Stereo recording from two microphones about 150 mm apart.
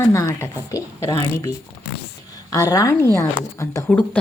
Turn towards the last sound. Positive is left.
turn(degrees=0)  # may be behind; listen again after turning